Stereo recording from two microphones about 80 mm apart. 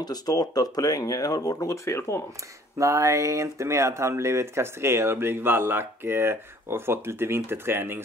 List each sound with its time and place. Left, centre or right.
0.0 s speech: left
2.8 s speech: right